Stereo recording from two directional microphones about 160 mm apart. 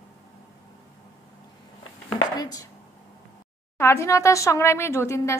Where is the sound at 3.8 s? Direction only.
15° left (ahead or behind).